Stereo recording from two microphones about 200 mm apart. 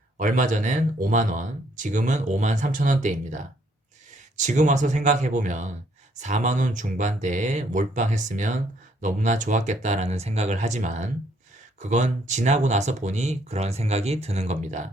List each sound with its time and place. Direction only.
0.2 s speech: 40° right (ahead or behind)